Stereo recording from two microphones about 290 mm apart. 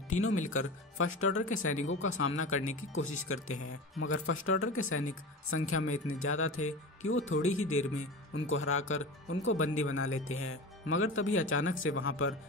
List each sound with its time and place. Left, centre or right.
0.1 s speech: left